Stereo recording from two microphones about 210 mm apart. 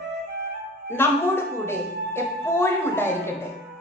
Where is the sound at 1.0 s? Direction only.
10° left (ahead or behind).